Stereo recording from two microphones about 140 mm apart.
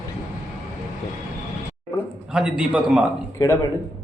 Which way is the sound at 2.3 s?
5° right (ahead or behind).